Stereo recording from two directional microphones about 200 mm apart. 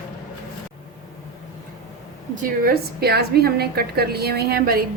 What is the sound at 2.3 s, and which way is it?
A woman's voice, 45° right (ahead or behind).